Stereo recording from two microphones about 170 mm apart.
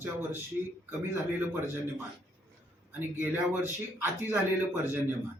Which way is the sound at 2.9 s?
10° right (ahead or behind).